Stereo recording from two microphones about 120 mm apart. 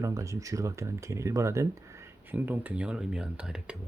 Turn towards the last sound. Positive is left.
turn(degrees=-5)  # may be behind; listen again after turning